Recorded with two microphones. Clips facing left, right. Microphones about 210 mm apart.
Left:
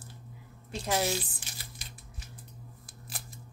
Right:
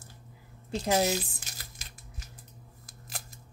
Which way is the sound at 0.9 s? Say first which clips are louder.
Right 2 dB; 40° right (ahead or behind).